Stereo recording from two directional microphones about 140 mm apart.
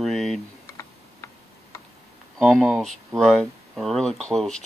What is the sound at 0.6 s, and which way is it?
Typing, 20° left (ahead or behind).